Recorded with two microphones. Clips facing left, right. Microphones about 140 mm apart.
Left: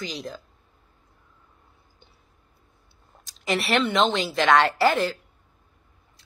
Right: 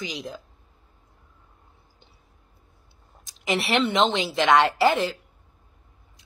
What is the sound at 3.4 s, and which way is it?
A woman's voice, 20° right (ahead or behind).